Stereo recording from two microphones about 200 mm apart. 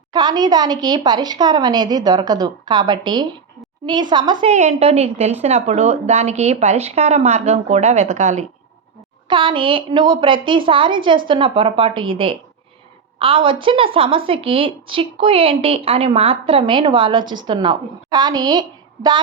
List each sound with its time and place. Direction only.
0.1 s a woman's voice: 20° right (ahead or behind)
4.5 s a woman's voice: 35° right (ahead or behind)